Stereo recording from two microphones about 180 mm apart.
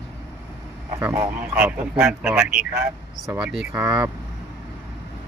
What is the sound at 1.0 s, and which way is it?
A man's voice, 10° right (ahead or behind).